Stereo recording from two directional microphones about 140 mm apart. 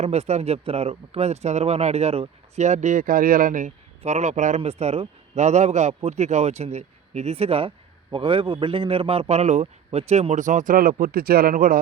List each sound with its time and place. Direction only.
0.0 s speech: 50° right (ahead or behind); by 11.8 s 85° right